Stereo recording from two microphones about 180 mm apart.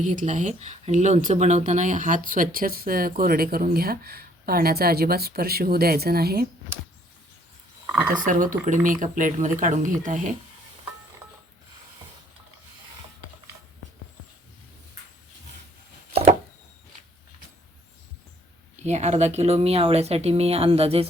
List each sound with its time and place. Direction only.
0.0 s speech: 45° right (ahead or behind)
8.2 s speech: 45° right (ahead or behind)
18.8 s speech: 40° right (ahead or behind)